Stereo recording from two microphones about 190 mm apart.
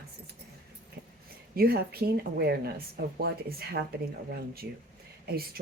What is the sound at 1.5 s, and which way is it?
A woman's voice, 55° right (ahead or behind).